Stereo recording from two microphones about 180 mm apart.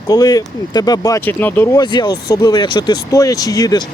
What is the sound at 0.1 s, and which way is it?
Speech, 20° left (ahead or behind).